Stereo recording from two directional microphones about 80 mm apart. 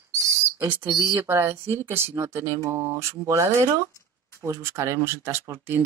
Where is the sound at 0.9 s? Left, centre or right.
Right.